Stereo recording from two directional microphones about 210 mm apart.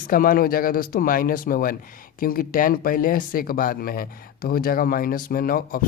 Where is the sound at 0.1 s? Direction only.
40° left (ahead or behind).